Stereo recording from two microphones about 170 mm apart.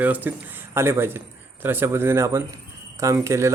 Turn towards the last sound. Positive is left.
turn(degrees=-15)  # may be behind; listen again after turning